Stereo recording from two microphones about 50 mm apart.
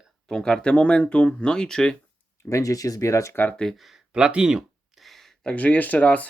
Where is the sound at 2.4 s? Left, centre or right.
Left.